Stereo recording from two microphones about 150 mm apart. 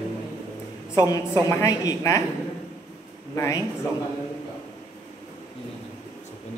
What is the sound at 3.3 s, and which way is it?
Speech, 20° left (ahead or behind).